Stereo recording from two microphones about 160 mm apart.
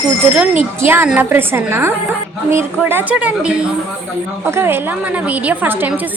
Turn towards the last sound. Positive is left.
turn(degrees=-10)  # may be behind; listen again after turning